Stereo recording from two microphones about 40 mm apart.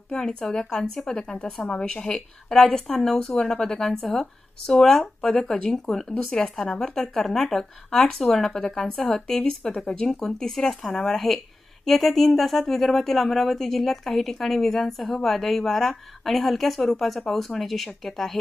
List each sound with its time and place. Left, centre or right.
0.2 s a woman's voice: centre